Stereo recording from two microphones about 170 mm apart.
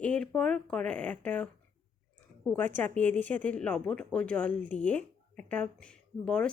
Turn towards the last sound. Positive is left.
turn(degrees=5)  # may be behind; listen again after turning